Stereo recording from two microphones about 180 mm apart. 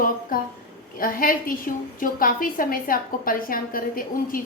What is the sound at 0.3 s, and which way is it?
A woman's voice, 50° left (ahead or behind).